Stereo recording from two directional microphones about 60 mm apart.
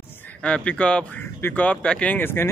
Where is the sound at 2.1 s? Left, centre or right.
Left.